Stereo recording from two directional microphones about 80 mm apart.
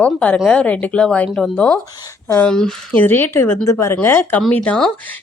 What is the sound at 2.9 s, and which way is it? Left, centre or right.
Speech, left.